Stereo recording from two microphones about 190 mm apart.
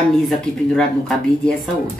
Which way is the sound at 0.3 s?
5° left (ahead or behind).